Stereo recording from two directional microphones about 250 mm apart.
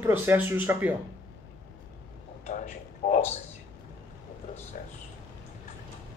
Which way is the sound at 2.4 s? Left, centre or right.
Left.